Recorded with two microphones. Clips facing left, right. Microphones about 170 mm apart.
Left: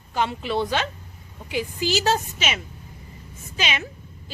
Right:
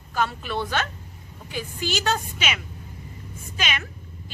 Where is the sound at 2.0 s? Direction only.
40° left (ahead or behind).